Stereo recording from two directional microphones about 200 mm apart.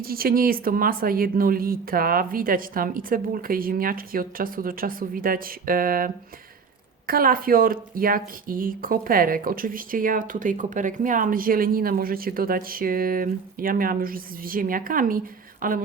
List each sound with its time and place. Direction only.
0.0 s speech: 50° right (ahead or behind)
7.1 s speech: 45° right (ahead or behind)